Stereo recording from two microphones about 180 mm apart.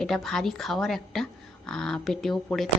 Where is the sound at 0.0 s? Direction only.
Centre (ahead or behind).